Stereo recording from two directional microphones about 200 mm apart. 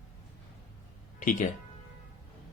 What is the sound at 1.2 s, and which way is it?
Speech, 40° left (ahead or behind).